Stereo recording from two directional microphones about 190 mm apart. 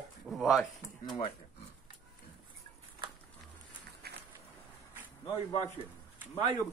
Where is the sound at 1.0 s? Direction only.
25° left (ahead or behind).